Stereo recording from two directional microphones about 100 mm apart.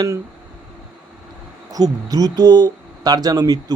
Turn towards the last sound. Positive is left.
turn(degrees=-40)  # may be behind; listen again after turning